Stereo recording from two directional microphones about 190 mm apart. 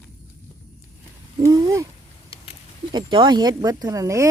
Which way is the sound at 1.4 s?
15° right (ahead or behind).